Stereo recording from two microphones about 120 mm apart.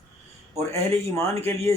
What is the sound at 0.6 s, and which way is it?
Speech, 20° left (ahead or behind).